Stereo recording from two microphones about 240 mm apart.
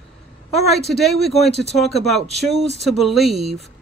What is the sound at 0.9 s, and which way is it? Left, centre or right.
Speech, centre.